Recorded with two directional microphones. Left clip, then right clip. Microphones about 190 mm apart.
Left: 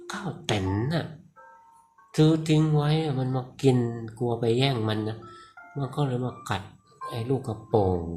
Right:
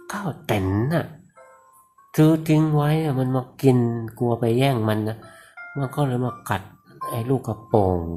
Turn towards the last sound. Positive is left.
turn(degrees=-20)  # may be behind; listen again after turning